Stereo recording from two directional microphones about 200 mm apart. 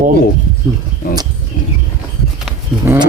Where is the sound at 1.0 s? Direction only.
45° left (ahead or behind).